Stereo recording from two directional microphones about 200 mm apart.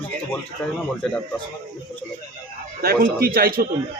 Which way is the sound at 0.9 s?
5° left (ahead or behind).